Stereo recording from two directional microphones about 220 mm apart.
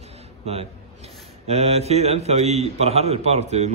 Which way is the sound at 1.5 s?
30° right (ahead or behind).